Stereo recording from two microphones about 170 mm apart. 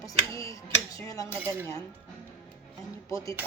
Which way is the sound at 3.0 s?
20° left (ahead or behind).